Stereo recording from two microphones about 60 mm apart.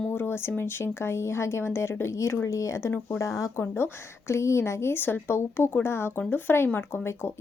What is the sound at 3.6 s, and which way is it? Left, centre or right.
Speech, left.